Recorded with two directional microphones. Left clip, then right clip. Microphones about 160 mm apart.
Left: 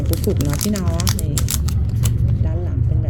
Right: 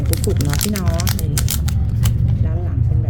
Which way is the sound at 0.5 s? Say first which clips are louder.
Right 1 dB; 15° right (ahead or behind).